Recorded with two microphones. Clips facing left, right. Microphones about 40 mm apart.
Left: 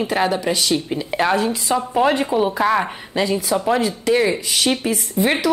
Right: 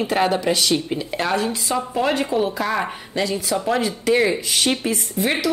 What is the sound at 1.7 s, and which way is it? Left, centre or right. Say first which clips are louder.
Speech: left 4 dB; centre.